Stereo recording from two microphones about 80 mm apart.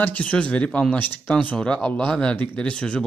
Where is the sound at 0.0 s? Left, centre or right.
Centre.